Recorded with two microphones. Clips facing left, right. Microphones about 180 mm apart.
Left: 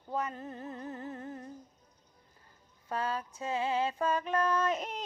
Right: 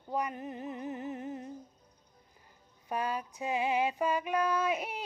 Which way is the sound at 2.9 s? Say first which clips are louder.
Right 1 dB; 15° right (ahead or behind).